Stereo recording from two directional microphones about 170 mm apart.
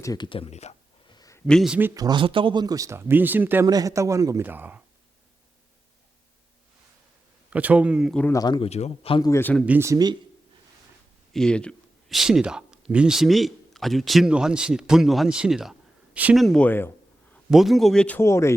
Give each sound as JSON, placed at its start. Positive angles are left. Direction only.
{"t": 0.0, "sound": "speech", "side_deg": 25}
{"t": 1.1, "sound": "a sound", "side_deg": 20}
{"t": 1.5, "sound": "speech", "side_deg": 0}
{"t": 2.0, "sound": "a man's voice", "side_deg": -25}
{"t": 7.5, "sound": "a man's voice", "side_deg": -10}
{"t": 8.2, "sound": "speech", "side_deg": 20}
{"t": 9.2, "sound": "speech", "side_deg": 15}
{"t": 9.6, "sound": "a man's voice", "side_deg": -15}
{"t": 11.3, "sound": "speech", "side_deg": 5}
{"t": 17.5, "sound": "speech", "side_deg": 0}